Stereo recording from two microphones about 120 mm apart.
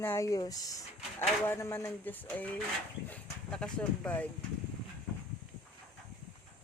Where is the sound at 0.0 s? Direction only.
25° left (ahead or behind).